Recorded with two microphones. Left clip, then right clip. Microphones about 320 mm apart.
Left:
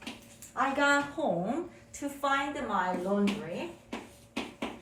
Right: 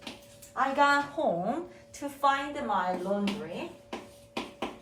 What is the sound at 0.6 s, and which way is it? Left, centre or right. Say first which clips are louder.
A woman's voice: right 2 dB; centre.